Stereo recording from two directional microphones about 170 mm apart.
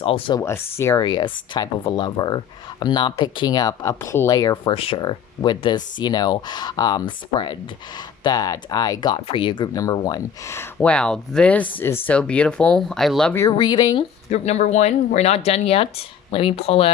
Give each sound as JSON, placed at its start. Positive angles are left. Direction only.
{"t": 0.0, "sound": "speech", "side_deg": 30}
{"t": 0.3, "sound": "speech", "side_deg": 15}
{"t": 13.6, "sound": "speech", "side_deg": 25}
{"t": 14.3, "sound": "speech", "side_deg": 40}